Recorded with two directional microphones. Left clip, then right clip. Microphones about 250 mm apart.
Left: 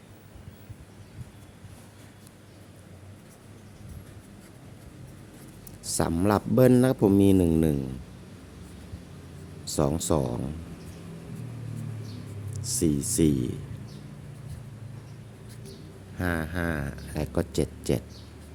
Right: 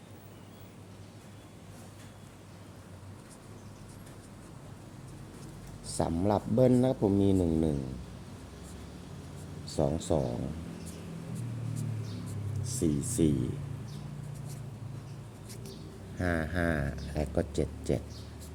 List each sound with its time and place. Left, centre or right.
5.8 s speech: left
9.6 s speech: left
12.6 s speech: left
16.1 s speech: centre